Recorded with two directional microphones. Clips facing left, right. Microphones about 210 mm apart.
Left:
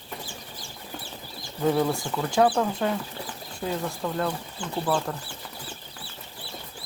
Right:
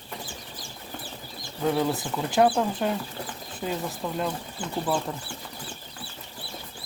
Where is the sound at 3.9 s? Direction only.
10° right (ahead or behind).